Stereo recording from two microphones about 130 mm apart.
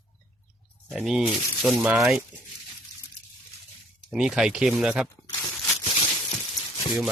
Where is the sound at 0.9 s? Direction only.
5° right (ahead or behind).